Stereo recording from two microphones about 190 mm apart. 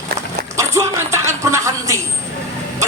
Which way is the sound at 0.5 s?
15° right (ahead or behind).